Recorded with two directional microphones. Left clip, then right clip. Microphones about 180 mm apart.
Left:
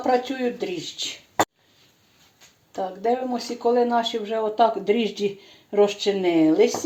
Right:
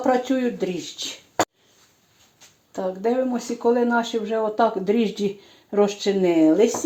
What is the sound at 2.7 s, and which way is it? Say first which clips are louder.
Speech: right 1 dB; 45° right (ahead or behind).